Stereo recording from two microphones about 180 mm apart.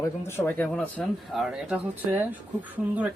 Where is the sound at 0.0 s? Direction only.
15° left (ahead or behind).